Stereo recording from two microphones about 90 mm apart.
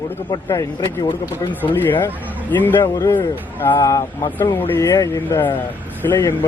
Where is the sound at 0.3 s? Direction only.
45° left (ahead or behind).